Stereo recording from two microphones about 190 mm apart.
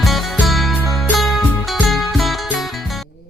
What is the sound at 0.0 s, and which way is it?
Music, centre (ahead or behind).